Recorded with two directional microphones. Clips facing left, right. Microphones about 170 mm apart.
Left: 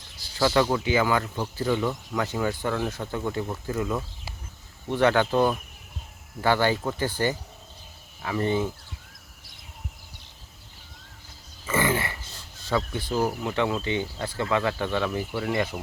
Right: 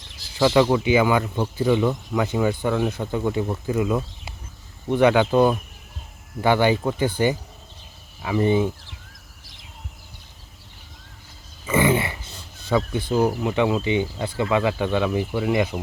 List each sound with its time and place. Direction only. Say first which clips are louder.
0.3 s speech: right 5 dB; 15° right (ahead or behind)
8.2 s speech: right 5 dB; 15° right (ahead or behind)
11.6 s a sound: right 5 dB; 15° right (ahead or behind)
12.7 s speech: right 5 dB; 15° right (ahead or behind)